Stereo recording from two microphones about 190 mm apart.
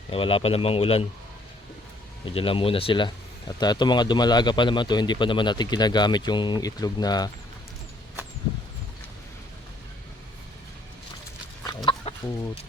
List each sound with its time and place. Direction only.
0.1 s speech: 30° left (ahead or behind)
2.2 s a man's voice: 30° left (ahead or behind)
12.1 s chicken: 35° left (ahead or behind)